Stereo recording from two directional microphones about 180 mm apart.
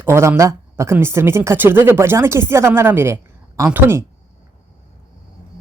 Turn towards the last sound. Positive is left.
turn(degrees=-10)  # may be behind; listen again after turning